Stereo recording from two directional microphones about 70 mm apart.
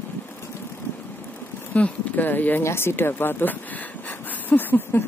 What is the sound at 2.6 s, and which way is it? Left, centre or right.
Speech, left.